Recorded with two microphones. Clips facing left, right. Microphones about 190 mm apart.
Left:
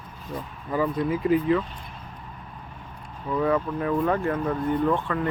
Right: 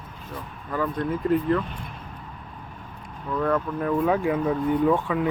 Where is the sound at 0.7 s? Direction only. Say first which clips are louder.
Left 2 dB; 10° left (ahead or behind).